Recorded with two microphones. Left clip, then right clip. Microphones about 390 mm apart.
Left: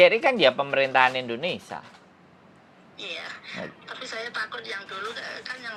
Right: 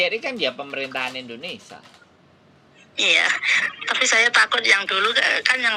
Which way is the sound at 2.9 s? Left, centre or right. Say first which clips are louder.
Right 18 dB; right.